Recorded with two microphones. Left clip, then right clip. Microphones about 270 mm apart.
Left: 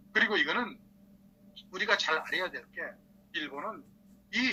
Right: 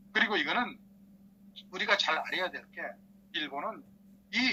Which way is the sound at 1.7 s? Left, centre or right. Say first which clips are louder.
Even; right.